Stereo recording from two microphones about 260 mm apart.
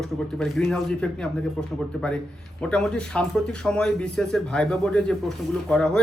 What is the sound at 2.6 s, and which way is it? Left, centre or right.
Speech, centre.